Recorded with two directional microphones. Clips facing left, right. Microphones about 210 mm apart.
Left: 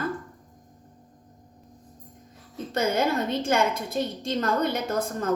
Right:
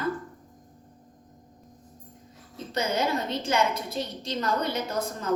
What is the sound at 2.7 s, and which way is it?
A woman's voice, 50° left (ahead or behind).